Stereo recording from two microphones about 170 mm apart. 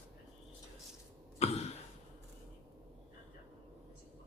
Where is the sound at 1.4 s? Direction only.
40° left (ahead or behind).